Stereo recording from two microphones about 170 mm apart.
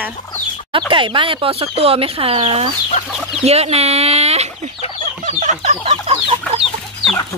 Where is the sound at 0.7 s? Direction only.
30° right (ahead or behind).